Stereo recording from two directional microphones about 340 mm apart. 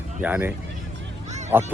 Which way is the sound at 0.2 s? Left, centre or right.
Centre.